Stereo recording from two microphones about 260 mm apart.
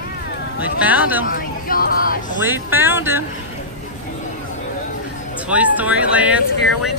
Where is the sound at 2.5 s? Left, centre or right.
Centre.